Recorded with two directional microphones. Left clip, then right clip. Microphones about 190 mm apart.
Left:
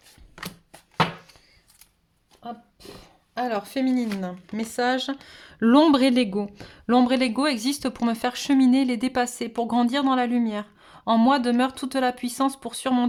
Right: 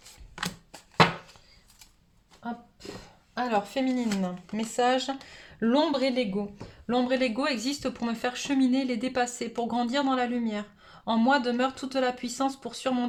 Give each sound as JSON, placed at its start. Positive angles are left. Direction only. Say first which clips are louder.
{"t": 2.4, "sound": "speech", "louder": "left 1 dB", "side_deg": 50}